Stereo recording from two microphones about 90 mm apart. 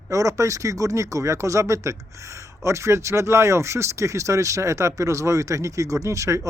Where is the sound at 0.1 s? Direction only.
40° right (ahead or behind).